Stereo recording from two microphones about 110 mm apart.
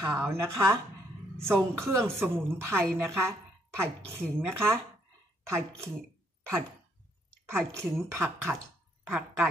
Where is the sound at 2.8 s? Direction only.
10° left (ahead or behind).